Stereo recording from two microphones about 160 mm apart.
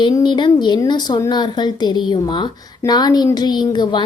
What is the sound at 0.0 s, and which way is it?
A woman's voice, 30° left (ahead or behind).